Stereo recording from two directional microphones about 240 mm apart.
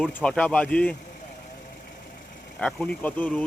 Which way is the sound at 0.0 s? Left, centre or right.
Centre.